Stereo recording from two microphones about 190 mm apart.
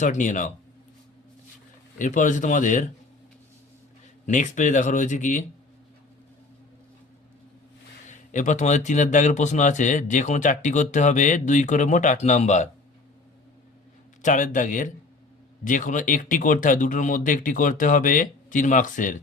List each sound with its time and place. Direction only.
0.0 s speech: 40° left (ahead or behind)
2.0 s speech: 40° left (ahead or behind)
4.3 s speech: 40° left (ahead or behind)
8.3 s speech: 40° left (ahead or behind)
14.2 s speech: 40° left (ahead or behind)